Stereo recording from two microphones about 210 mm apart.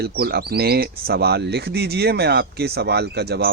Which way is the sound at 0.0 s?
50° right (ahead or behind).